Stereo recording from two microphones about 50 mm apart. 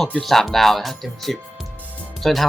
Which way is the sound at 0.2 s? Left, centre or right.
Centre.